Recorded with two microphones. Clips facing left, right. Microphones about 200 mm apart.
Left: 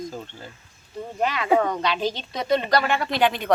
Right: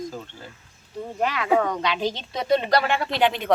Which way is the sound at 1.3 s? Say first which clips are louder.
Left 1 dB; 10° left (ahead or behind).